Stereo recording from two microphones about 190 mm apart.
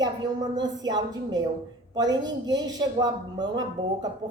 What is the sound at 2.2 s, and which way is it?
Speech, 20° right (ahead or behind).